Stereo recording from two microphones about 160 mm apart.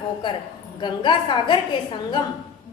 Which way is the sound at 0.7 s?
30° left (ahead or behind).